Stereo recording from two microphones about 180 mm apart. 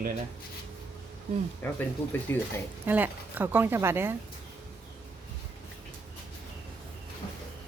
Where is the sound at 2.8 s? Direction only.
10° right (ahead or behind).